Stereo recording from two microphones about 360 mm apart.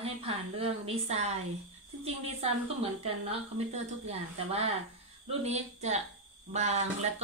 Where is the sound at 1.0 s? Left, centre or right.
Centre.